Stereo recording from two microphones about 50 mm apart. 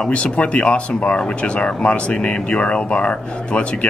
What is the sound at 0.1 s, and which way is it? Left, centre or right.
Speech, left.